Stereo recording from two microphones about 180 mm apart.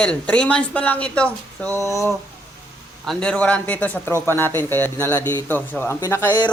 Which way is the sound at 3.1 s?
5° left (ahead or behind).